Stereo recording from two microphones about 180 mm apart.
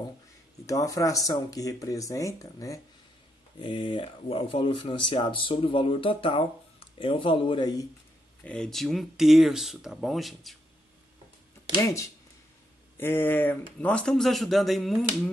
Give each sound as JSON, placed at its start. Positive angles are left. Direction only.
{"t": 0.7, "sound": "speech", "side_deg": 20}
{"t": 8.5, "sound": "speech", "side_deg": 5}
{"t": 11.8, "sound": "speech", "side_deg": 15}